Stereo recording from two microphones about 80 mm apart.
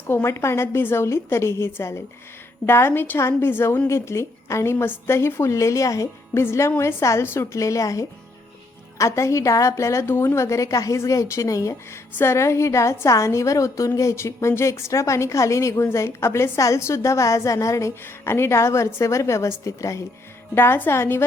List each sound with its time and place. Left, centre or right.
0.1 s a woman's voice: left
6.4 s a woman's voice: left
20.6 s a woman's voice: left